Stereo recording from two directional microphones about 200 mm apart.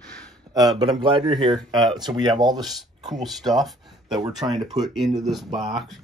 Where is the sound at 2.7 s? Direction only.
Centre (ahead or behind).